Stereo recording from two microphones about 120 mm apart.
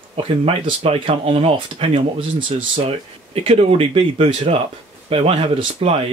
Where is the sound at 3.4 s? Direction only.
55° right (ahead or behind).